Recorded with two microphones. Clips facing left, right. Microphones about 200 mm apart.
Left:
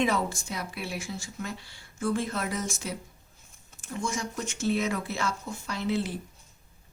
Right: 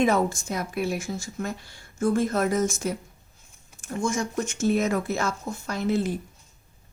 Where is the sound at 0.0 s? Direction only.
45° right (ahead or behind).